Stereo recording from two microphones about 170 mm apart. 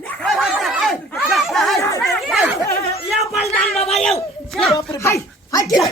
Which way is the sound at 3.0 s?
Centre (ahead or behind).